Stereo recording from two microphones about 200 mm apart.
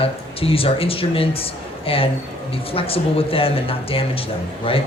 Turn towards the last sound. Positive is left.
turn(degrees=30)  # may be behind; listen again after turning